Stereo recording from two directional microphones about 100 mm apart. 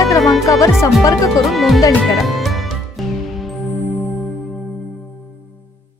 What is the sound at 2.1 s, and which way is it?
Music, centre (ahead or behind).